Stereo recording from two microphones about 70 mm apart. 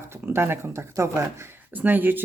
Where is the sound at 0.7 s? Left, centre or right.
Right.